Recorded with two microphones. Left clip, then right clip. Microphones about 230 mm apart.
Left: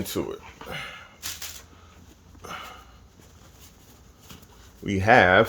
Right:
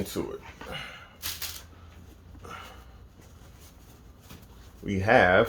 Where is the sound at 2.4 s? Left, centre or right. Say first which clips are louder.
Left 5 dB; left.